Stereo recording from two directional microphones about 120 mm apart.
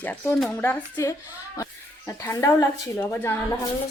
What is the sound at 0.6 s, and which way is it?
A woman's voice, 20° left (ahead or behind).